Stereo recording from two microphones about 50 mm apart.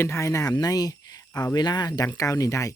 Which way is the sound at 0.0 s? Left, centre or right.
Left.